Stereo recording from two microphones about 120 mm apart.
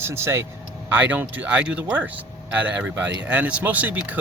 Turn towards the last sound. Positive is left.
turn(degrees=-15)  # may be behind; listen again after turning